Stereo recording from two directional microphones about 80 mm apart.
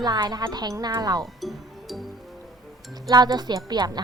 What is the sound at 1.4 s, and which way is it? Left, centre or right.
Speech, centre.